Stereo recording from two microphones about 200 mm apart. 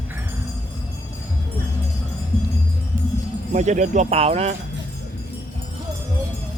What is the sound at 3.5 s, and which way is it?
Speech, 35° right (ahead or behind).